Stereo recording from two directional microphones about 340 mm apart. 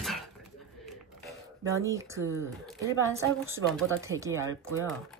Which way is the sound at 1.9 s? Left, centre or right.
Centre.